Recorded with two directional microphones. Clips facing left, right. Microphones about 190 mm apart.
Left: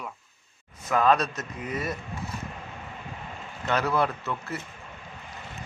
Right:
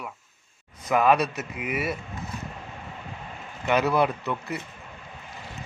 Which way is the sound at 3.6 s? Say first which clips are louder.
Right 3 dB; 15° right (ahead or behind).